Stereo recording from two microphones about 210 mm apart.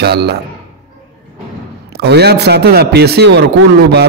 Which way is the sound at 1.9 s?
50° right (ahead or behind).